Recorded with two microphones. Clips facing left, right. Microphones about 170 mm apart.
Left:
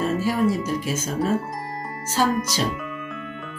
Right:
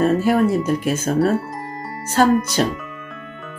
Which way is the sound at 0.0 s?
60° right (ahead or behind).